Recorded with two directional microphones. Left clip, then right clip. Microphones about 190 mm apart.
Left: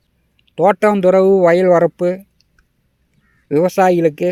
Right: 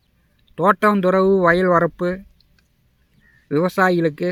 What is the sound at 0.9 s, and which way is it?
Speech, 20° left (ahead or behind).